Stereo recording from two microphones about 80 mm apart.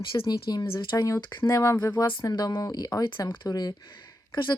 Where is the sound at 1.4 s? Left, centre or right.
Left.